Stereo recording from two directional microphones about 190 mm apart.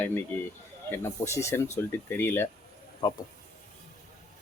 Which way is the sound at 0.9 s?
15° left (ahead or behind).